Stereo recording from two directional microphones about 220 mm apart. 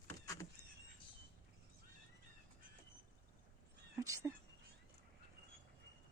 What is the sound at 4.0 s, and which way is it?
Cat, 15° right (ahead or behind).